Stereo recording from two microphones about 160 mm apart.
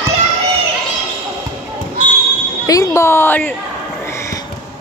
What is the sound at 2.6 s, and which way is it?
Speech, 20° left (ahead or behind).